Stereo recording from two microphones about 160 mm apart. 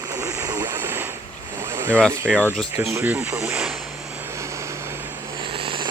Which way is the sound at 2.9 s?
10° right (ahead or behind).